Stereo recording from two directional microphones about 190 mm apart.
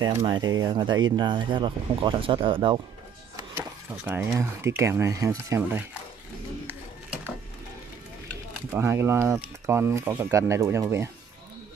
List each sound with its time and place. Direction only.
0.2 s speech: 20° right (ahead or behind)
3.9 s speech: 10° right (ahead or behind)
8.7 s speech: 15° right (ahead or behind)